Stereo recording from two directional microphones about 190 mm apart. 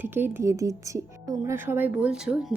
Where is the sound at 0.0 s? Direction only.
10° right (ahead or behind).